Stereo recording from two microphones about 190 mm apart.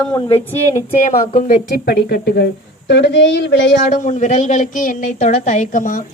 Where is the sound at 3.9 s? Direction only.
40° left (ahead or behind).